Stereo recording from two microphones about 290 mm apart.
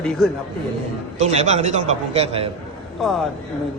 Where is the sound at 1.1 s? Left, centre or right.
Right.